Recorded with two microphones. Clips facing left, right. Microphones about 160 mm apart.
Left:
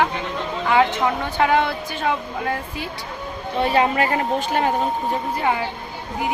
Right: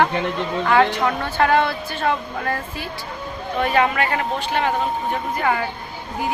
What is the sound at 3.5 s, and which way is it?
Speech, 30° left (ahead or behind).